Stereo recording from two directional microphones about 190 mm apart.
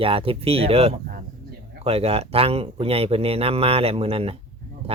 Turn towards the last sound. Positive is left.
turn(degrees=-30)  # may be behind; listen again after turning